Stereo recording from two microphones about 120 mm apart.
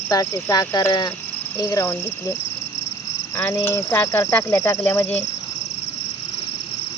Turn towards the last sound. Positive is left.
turn(degrees=40)  # may be behind; listen again after turning